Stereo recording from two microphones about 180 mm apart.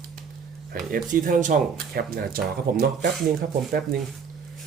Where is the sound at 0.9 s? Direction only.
45° right (ahead or behind).